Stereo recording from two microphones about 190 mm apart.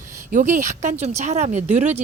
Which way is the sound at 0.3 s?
40° right (ahead or behind).